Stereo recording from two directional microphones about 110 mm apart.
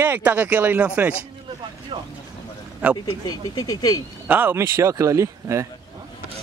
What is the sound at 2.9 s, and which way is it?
Speech, 35° left (ahead or behind).